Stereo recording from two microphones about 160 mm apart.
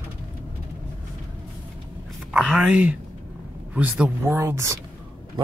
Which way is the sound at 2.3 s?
5° right (ahead or behind).